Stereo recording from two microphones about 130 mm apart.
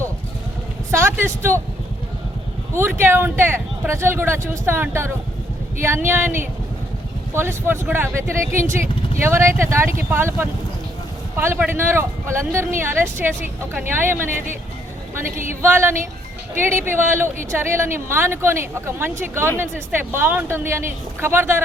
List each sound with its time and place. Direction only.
0.9 s speech: 20° right (ahead or behind)
3.0 s speech: 15° right (ahead or behind)
15.6 s speech: 20° right (ahead or behind)